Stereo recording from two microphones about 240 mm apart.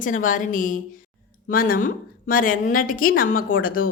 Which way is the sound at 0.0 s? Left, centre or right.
Left.